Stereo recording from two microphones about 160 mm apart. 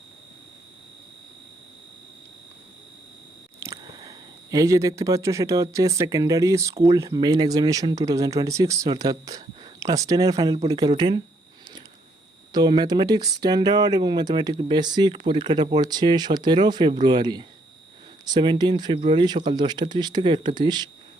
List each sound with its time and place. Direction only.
3.6 s speech: 20° right (ahead or behind)
12.5 s speech: 25° right (ahead or behind)